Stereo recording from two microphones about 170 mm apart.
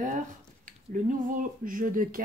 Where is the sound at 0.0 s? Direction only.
50° right (ahead or behind).